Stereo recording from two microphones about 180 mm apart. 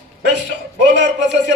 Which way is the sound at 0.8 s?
75° right (ahead or behind).